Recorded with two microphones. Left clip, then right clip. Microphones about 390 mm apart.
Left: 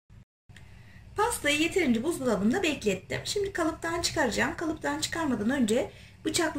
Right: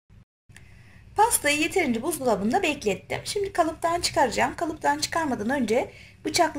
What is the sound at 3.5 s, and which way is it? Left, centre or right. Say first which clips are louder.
Speech: right 6 dB; right.